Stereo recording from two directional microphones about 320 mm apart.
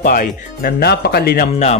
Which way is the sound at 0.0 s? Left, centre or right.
Left.